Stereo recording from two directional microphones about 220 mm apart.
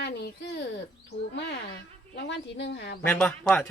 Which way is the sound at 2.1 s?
50° left (ahead or behind).